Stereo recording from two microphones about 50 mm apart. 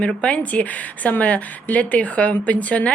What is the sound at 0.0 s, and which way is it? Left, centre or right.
A woman's voice, left.